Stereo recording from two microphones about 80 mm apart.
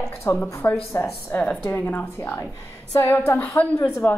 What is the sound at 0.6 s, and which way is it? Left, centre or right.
Speech, left.